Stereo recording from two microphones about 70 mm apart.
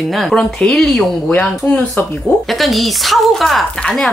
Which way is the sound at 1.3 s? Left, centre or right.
Left.